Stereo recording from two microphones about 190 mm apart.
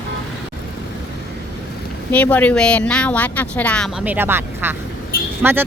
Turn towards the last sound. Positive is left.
turn(degrees=-10)  # may be behind; listen again after turning